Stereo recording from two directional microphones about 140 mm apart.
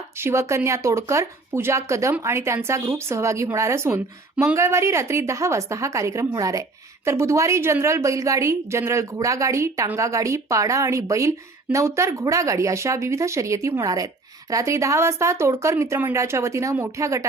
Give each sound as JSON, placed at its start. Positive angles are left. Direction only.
{"t": 0.2, "sound": "speech", "side_deg": -20}